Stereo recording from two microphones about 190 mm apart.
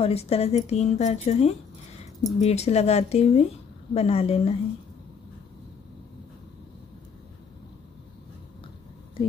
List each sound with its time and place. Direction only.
0.0 s speech: 35° left (ahead or behind)